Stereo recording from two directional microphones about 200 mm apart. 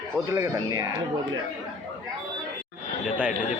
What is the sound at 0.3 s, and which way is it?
Speech, 15° right (ahead or behind).